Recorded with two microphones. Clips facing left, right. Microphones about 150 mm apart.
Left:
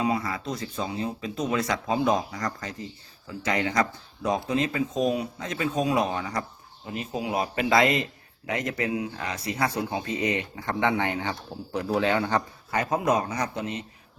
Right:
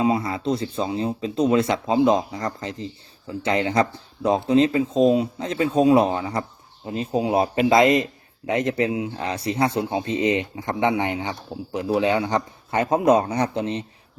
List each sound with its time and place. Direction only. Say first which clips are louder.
0.0 s a man's voice: right 5 dB; 25° right (ahead or behind)